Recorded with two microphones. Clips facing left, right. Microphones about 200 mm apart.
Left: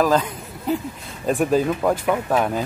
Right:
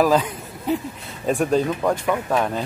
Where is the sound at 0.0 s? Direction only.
10° right (ahead or behind).